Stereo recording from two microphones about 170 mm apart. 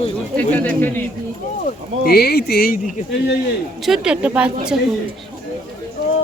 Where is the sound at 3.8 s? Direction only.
5° right (ahead or behind).